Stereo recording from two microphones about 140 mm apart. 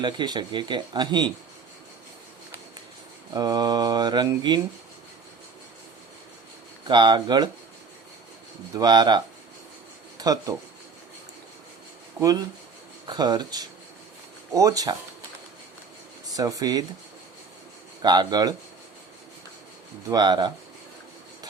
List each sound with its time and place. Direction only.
0.0 s speech: 35° right (ahead or behind)
3.3 s speech: 30° right (ahead or behind)
6.8 s speech: 35° right (ahead or behind)
8.7 s speech: 30° right (ahead or behind)
12.2 s speech: 30° right (ahead or behind)
16.2 s speech: 25° right (ahead or behind)
18.0 s speech: 30° right (ahead or behind)
20.1 s speech: 30° right (ahead or behind)